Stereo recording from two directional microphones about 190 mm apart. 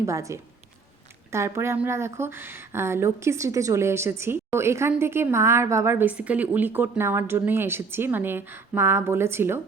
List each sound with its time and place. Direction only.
0.0 s speech: 15° right (ahead or behind)